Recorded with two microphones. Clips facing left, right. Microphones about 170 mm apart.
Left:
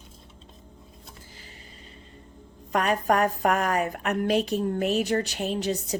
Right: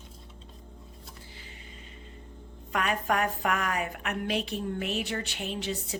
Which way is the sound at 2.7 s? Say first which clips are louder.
Left 5 dB; 40° left (ahead or behind).